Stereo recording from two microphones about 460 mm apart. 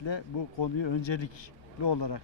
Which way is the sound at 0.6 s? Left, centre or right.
Left.